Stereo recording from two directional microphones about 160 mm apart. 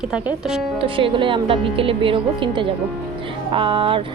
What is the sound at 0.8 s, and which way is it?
A woman's voice, 35° right (ahead or behind).